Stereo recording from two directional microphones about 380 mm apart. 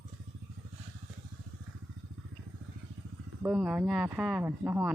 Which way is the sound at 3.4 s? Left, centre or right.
Centre.